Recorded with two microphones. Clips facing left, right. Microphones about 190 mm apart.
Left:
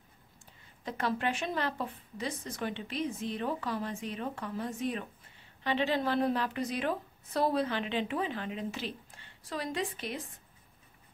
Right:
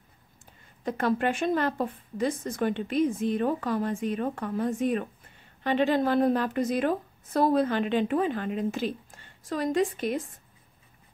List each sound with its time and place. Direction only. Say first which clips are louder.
0.8 s a woman's voice: right 6 dB; 50° right (ahead or behind)